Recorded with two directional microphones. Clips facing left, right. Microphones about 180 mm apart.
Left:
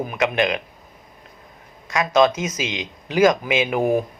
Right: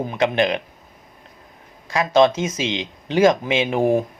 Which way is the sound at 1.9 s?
30° right (ahead or behind).